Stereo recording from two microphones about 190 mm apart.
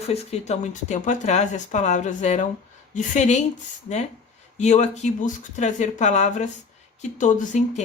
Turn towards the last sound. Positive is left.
turn(degrees=40)  # may be behind; listen again after turning